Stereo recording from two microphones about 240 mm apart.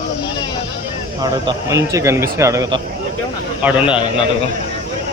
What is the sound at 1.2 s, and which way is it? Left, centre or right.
Speech, centre.